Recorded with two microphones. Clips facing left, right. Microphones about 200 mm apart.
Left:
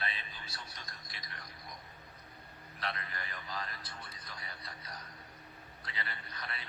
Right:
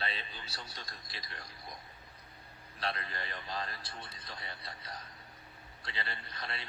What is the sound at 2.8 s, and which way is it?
A man's voice, 30° right (ahead or behind).